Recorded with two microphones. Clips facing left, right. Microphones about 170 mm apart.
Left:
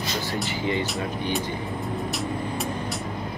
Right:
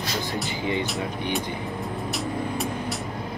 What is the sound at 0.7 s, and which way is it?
Speech, 15° right (ahead or behind).